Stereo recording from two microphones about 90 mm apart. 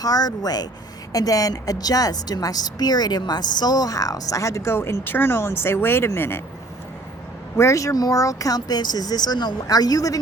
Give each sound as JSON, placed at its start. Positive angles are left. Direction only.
{"t": 0.0, "sound": "a woman's voice", "side_deg": 45}
{"t": 7.5, "sound": "speech", "side_deg": 30}